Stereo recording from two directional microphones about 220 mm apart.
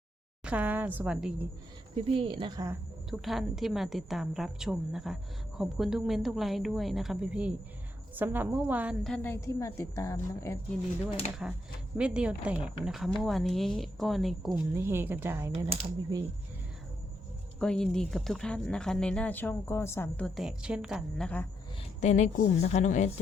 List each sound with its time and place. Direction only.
0.4 s a woman's voice: 5° right (ahead or behind)
2.0 s speech: 25° right (ahead or behind)
3.1 s a woman's voice: centre (ahead or behind)
11.4 s a woman's voice: 5° right (ahead or behind)
17.6 s a woman's voice: 5° left (ahead or behind)
22.0 s a woman's voice: 35° left (ahead or behind)